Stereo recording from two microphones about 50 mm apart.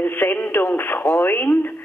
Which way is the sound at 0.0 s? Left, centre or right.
Left.